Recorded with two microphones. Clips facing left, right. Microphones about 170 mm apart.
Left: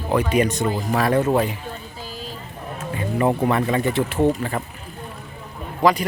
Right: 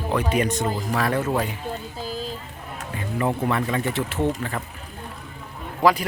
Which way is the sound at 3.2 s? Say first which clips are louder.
Left 4 dB; 35° left (ahead or behind).